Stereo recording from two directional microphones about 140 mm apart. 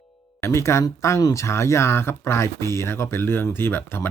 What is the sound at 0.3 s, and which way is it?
Speech, 20° left (ahead or behind).